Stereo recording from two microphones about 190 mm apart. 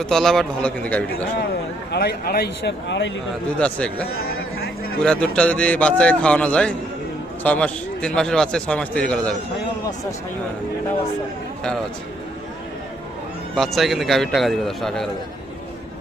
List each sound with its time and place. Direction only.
0.0 s a man's voice: centre (ahead or behind)
1.9 s speech: 60° left (ahead or behind)
3.6 s speech: 5° left (ahead or behind)
4.9 s a man's voice: 5° left (ahead or behind)
13.6 s a man's voice: centre (ahead or behind)